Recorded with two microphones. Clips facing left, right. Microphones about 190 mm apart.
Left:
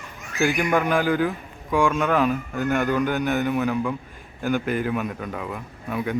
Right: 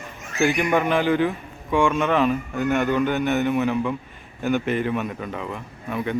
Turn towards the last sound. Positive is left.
turn(degrees=5)  # may be behind; listen again after turning